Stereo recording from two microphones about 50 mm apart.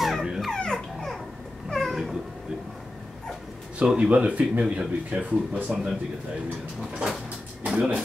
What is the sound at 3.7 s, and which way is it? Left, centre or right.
Speech, centre.